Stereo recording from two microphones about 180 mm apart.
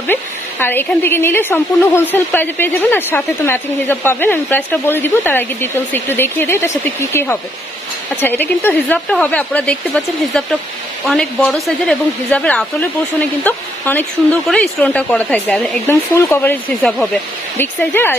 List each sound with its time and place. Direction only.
0.0 s a woman's voice: 10° left (ahead or behind)